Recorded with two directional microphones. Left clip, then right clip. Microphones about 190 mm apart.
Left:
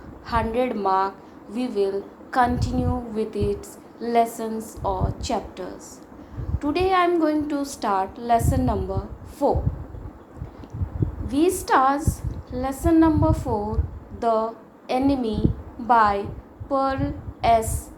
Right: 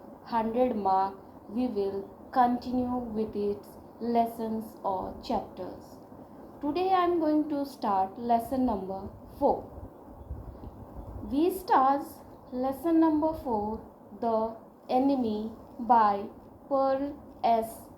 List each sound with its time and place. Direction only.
0.3 s a woman's voice: 20° left (ahead or behind)
11.3 s a woman's voice: 20° left (ahead or behind)